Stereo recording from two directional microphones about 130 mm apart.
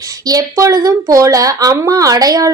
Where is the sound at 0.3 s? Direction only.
25° right (ahead or behind).